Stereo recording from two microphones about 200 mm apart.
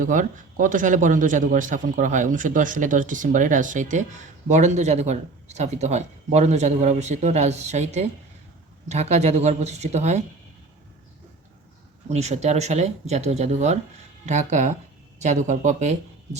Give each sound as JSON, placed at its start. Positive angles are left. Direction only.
{"t": 0.0, "sound": "a man's voice", "side_deg": -40}
{"t": 12.0, "sound": "a man's voice", "side_deg": -35}